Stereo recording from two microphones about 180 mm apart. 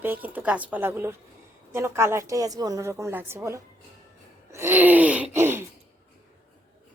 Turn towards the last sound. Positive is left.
turn(degrees=-15)  # may be behind; listen again after turning